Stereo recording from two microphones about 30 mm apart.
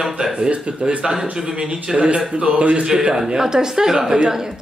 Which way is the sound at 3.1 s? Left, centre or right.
Centre.